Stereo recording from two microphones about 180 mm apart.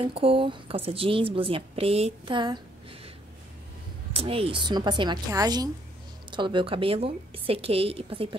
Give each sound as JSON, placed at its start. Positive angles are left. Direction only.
{"t": 0.0, "sound": "a woman's voice", "side_deg": -30}
{"t": 4.1, "sound": "a woman's voice", "side_deg": -30}